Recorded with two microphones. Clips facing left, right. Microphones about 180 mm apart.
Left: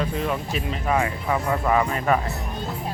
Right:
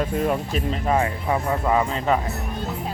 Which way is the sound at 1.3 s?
20° right (ahead or behind).